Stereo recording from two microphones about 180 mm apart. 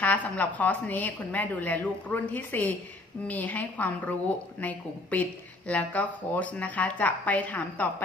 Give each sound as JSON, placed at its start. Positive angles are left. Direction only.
{"t": 0.0, "sound": "a woman's voice", "side_deg": 10}